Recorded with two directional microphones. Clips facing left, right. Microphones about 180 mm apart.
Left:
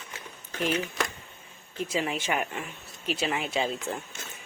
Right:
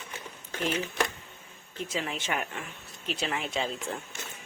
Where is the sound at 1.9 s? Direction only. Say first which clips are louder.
Left 4 dB; 10° left (ahead or behind).